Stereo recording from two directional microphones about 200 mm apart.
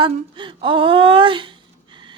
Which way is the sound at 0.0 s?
25° right (ahead or behind).